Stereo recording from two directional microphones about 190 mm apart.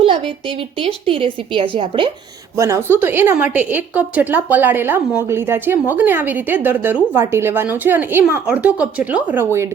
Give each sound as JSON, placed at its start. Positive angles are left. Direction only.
{"t": 0.8, "sound": "a woman's voice", "side_deg": -30}
{"t": 2.6, "sound": "a woman's voice", "side_deg": -15}